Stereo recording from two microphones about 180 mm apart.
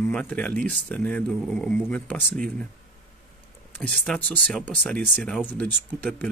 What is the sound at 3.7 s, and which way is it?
Speech, 5° left (ahead or behind).